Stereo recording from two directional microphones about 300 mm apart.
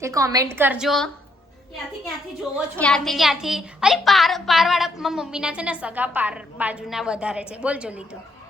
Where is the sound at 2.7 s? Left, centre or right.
Centre.